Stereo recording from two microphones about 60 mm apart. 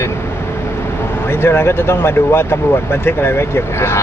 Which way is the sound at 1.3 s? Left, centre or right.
Left.